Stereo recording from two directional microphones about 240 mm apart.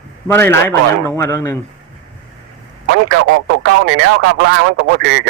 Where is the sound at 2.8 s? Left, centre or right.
Right.